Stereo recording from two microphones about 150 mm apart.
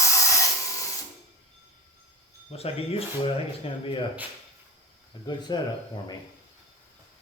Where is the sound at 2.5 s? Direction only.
40° left (ahead or behind).